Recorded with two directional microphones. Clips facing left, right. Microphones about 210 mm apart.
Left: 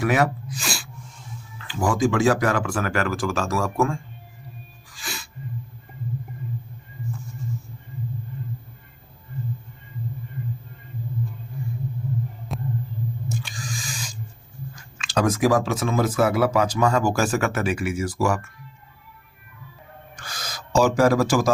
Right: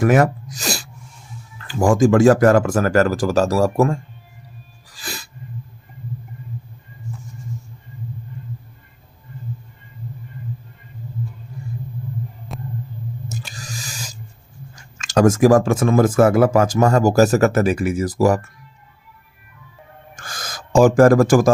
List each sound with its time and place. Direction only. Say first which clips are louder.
0.0 s speech: right 6 dB; 45° right (ahead or behind)
4.9 s sneeze: right 3 dB; 40° right (ahead or behind)
12.5 s heart murmur: left 2 dB; centre (ahead or behind)
13.2 s a sound: left 1 dB; 40° right (ahead or behind)
14.9 s speech: right 7 dB; 45° right (ahead or behind)
20.1 s gasp: right 3 dB; 50° right (ahead or behind)